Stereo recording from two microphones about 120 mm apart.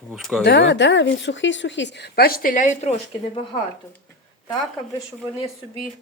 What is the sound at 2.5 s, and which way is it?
Speech, 80° left.